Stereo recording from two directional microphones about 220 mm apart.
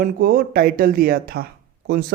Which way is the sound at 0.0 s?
40° right (ahead or behind).